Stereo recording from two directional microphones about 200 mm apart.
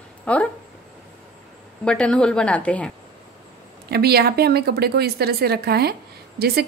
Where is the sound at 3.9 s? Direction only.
50° right (ahead or behind).